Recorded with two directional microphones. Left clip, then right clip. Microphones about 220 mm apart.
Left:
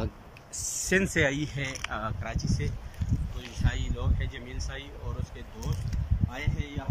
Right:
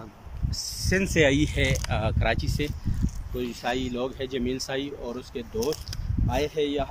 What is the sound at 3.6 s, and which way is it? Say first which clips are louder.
Speech: right 9 dB; 55° right (ahead or behind).